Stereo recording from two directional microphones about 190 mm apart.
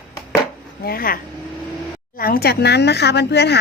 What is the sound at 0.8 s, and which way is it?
Speech, 50° left (ahead or behind).